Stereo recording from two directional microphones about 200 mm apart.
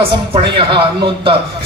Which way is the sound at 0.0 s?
25° right (ahead or behind).